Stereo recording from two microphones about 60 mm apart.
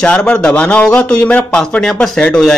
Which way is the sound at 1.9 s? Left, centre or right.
Centre.